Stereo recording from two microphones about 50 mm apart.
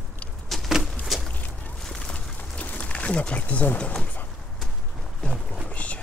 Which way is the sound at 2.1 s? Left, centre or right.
Left.